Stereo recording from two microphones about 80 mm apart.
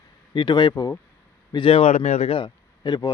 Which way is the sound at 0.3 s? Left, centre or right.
Left.